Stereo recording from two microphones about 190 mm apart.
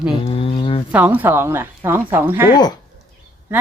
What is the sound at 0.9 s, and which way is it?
Speech, 10° right (ahead or behind).